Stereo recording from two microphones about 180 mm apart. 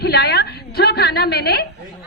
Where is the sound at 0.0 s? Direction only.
65° left (ahead or behind).